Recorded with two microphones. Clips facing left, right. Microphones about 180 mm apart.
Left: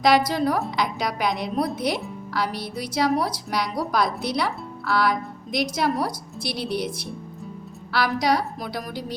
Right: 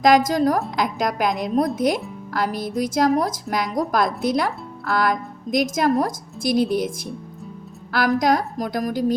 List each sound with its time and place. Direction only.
0.0 s speech: 45° right (ahead or behind)